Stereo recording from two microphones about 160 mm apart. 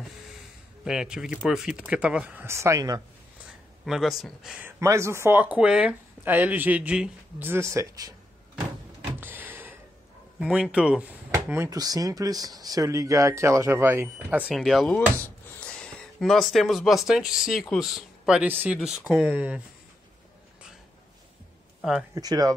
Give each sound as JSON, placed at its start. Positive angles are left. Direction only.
{"t": 0.8, "sound": "speech", "side_deg": -5}
{"t": 3.8, "sound": "speech", "side_deg": 0}
{"t": 9.2, "sound": "a sound", "side_deg": -10}
{"t": 10.4, "sound": "speech", "side_deg": -5}
{"t": 22.1, "sound": "speech", "side_deg": -25}